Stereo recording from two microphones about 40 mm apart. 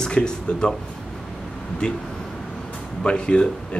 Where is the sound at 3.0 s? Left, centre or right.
Left.